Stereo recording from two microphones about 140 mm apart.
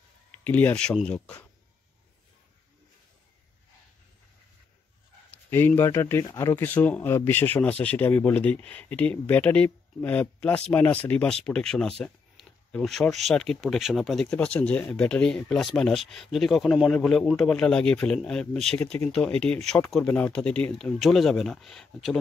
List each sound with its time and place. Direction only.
0.4 s speech: 10° left (ahead or behind)
5.5 s speech: 15° left (ahead or behind)